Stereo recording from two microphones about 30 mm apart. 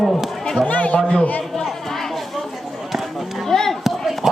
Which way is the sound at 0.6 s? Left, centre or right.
Left.